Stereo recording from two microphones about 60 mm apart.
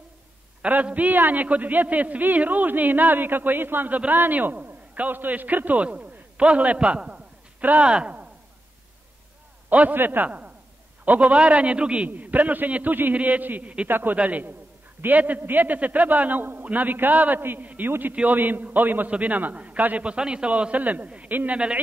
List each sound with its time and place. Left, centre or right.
0.8 s a man's voice: right
9.7 s a man's voice: right
14.1 s a man's voice: right